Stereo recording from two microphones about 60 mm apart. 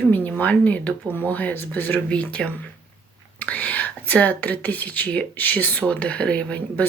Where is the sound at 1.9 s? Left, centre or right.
Centre.